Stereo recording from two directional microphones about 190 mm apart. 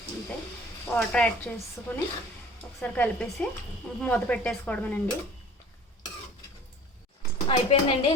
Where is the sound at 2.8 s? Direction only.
5° left (ahead or behind).